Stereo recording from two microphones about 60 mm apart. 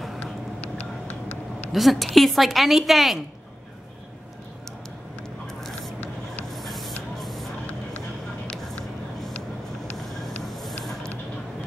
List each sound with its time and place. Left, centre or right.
0.7 s vehicle: left
1.7 s a woman's voice: centre
5.5 s squish: centre
6.5 s spray: centre
10.5 s a sound: centre